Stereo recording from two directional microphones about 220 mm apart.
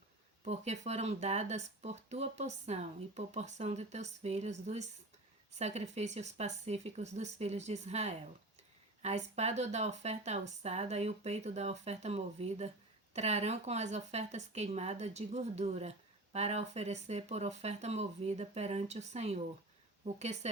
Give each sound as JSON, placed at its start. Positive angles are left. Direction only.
{"t": 0.4, "sound": "speech", "side_deg": -30}